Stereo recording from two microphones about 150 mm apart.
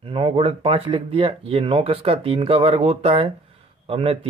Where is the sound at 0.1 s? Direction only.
40° right (ahead or behind).